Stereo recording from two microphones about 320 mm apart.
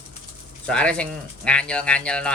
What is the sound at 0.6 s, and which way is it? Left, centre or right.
Speech, centre.